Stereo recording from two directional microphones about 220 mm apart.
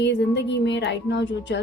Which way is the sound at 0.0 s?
50° left (ahead or behind).